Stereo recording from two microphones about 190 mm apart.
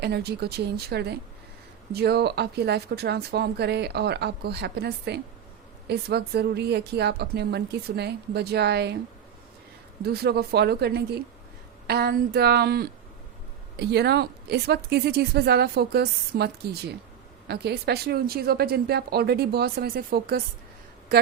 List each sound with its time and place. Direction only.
0.0 s speech: 60° right (ahead or behind)
10.0 s speech: 55° right (ahead or behind)